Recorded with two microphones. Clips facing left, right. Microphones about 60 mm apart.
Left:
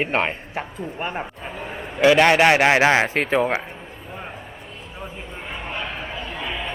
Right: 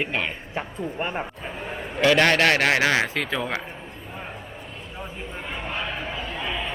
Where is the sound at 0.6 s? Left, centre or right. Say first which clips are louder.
Right 2 dB; centre.